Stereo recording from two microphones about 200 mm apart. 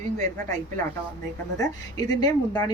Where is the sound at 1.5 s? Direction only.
20° left (ahead or behind).